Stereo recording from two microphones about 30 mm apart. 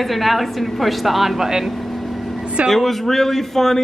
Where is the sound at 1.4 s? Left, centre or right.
Centre.